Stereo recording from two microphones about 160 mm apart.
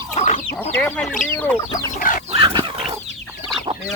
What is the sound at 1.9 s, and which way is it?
Chicken, 55° left (ahead or behind).